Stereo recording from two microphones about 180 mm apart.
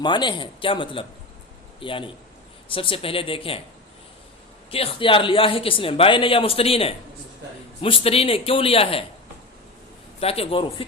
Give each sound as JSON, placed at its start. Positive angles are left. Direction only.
{"t": 0.0, "sound": "a man's voice", "side_deg": 25}
{"t": 4.7, "sound": "a man's voice", "side_deg": 30}
{"t": 10.2, "sound": "a man's voice", "side_deg": 35}